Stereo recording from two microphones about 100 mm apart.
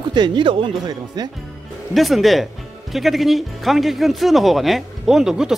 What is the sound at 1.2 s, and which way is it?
Speech, 45° right (ahead or behind).